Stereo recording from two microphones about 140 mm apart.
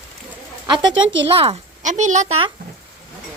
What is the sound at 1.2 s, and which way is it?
Speech, 45° right (ahead or behind).